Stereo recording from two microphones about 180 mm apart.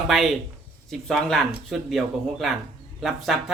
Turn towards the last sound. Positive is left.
turn(degrees=0)  # may be behind; listen again after turning